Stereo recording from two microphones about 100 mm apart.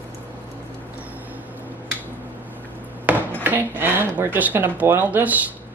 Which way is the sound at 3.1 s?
15° right (ahead or behind).